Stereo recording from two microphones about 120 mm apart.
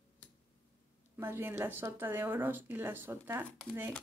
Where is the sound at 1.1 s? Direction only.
20° right (ahead or behind).